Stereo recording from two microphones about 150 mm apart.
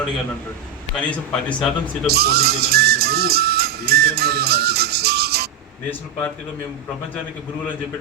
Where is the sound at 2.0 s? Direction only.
90° right.